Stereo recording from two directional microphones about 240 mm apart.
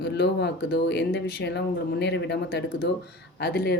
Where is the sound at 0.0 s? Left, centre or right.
Left.